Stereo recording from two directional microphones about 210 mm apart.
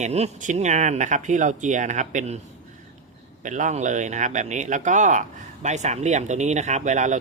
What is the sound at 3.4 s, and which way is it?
Speech, 35° right (ahead or behind).